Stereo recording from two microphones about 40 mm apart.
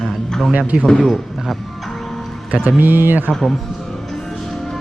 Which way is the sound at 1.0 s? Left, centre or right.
Centre.